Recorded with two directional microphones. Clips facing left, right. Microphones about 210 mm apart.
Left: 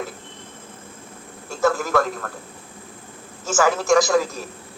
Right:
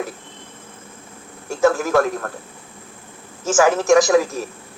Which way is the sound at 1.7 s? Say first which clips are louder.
Right 3 dB; 20° right (ahead or behind).